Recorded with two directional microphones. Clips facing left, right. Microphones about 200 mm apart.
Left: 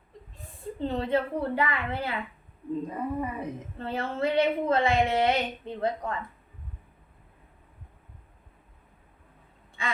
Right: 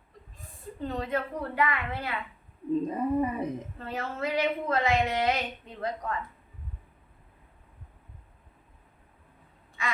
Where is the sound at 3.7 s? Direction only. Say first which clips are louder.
Left 4 dB; 30° left (ahead or behind).